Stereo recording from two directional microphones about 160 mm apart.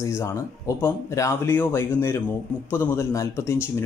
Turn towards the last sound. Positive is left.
turn(degrees=20)  # may be behind; listen again after turning